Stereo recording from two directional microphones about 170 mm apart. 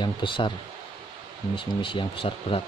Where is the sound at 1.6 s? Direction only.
30° left (ahead or behind).